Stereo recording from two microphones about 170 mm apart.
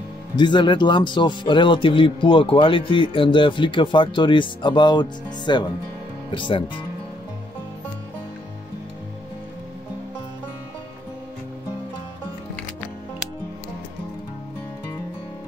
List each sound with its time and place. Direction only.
0.4 s speech: 25° left (ahead or behind)